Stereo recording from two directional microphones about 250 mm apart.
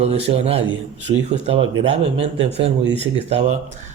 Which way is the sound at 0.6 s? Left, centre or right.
Right.